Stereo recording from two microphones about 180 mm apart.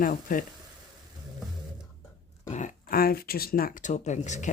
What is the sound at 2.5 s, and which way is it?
Speech, 45° left (ahead or behind).